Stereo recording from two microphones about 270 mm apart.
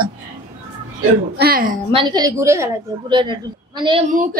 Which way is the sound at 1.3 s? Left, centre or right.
Right.